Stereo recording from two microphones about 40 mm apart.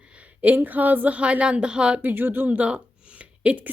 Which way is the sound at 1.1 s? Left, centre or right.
Right.